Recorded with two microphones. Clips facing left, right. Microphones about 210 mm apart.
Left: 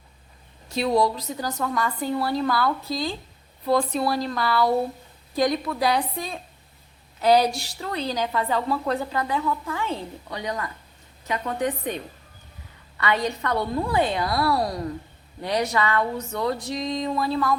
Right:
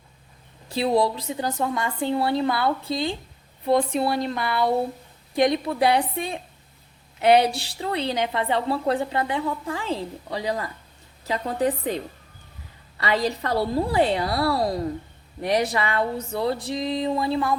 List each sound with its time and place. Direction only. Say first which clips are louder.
0.7 s a woman's voice: even; 30° right (ahead or behind)